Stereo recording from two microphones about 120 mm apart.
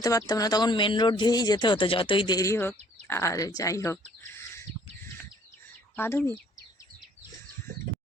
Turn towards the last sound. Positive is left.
turn(degrees=20)  # may be behind; listen again after turning